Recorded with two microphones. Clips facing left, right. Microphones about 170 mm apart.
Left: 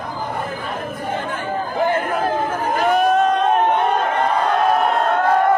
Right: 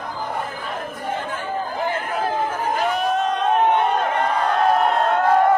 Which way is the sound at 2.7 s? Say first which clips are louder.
Left 7 dB; 50° left (ahead or behind).